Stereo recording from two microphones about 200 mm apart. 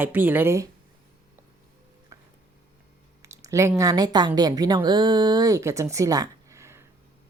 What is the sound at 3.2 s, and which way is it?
A woman's voice, 15° right (ahead or behind).